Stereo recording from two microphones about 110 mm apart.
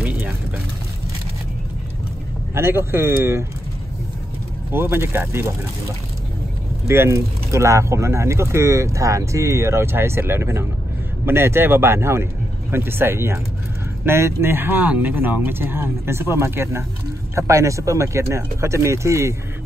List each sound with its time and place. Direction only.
0.0 s a sound: 15° right (ahead or behind)
2.5 s speech: 25° right (ahead or behind)
4.6 s speech: 20° right (ahead or behind)
6.9 s speech: 25° right (ahead or behind)